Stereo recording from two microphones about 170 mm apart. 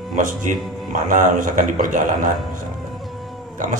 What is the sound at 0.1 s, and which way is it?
A man's voice, 50° right (ahead or behind).